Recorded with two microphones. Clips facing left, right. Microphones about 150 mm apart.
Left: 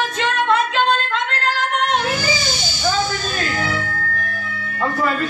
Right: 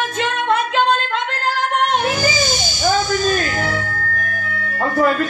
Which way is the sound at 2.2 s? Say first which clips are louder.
Right 3 dB; 45° right (ahead or behind).